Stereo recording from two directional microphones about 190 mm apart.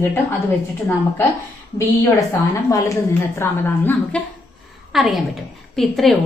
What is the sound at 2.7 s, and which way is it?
A woman's voice, 15° left (ahead or behind).